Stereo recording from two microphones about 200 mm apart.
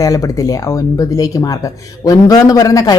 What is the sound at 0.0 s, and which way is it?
Speech, 15° left (ahead or behind).